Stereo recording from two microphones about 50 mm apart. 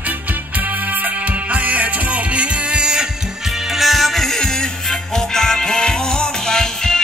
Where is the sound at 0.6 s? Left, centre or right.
Right; by 3.1 s centre.